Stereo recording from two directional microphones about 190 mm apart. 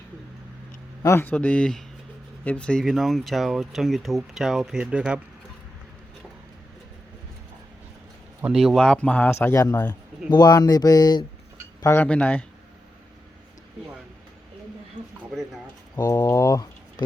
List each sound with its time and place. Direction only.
1.0 s a man's voice: 10° left (ahead or behind); by 5.2 s 5° right (ahead or behind)
8.4 s a man's voice: 5° right (ahead or behind)
16.0 s a man's voice: 20° left (ahead or behind)